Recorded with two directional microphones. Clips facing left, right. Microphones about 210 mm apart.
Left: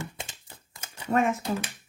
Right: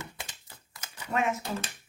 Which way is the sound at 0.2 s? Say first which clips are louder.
Left 4 dB; 30° left (ahead or behind).